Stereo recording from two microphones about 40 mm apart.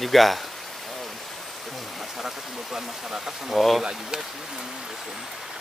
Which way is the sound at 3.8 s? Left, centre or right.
Centre.